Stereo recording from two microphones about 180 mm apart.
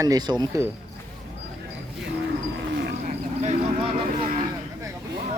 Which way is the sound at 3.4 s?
35° right (ahead or behind).